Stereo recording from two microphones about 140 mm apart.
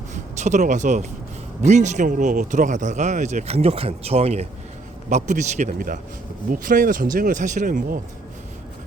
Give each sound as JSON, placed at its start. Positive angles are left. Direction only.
{"t": 0.1, "sound": "speech", "side_deg": -60}
{"t": 5.0, "sound": "speech", "side_deg": -60}